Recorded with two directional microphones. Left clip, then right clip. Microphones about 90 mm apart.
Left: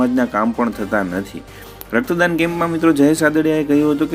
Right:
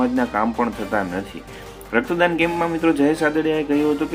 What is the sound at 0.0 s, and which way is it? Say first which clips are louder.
Speech: left 3 dB; 45° left (ahead or behind).